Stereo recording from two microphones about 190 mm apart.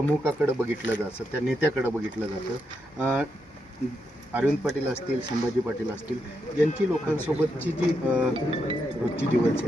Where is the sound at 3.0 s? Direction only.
10° right (ahead or behind).